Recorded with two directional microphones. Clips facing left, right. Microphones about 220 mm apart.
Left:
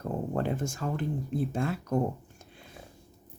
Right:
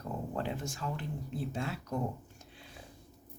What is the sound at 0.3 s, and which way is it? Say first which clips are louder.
Speech: left 6 dB; 50° left (ahead or behind).